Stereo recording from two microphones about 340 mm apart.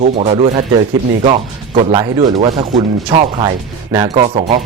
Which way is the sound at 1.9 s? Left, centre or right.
Centre.